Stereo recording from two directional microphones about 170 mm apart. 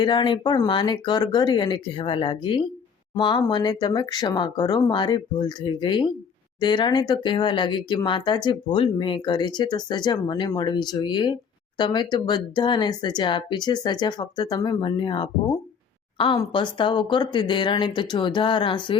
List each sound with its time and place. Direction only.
0.0 s speech: 25° left (ahead or behind)